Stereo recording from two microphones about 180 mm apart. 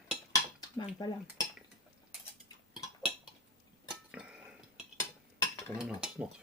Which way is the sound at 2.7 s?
5° right (ahead or behind).